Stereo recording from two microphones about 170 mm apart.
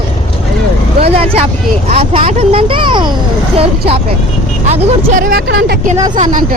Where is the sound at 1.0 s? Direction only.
35° right (ahead or behind).